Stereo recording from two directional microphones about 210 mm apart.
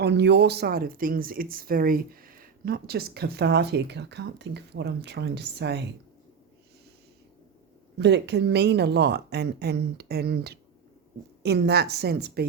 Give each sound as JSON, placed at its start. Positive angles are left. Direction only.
{"t": 0.0, "sound": "speech", "side_deg": -55}
{"t": 7.9, "sound": "speech", "side_deg": -55}